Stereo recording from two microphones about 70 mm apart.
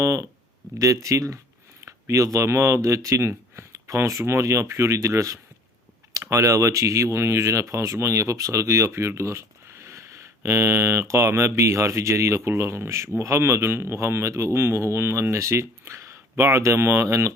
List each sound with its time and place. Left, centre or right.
0.0 s speech: right
3.8 s speech: right